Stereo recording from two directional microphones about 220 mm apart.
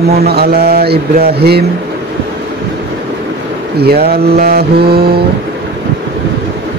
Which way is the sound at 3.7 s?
45° right (ahead or behind).